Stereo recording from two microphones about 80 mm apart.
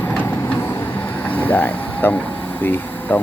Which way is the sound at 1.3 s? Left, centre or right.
Left.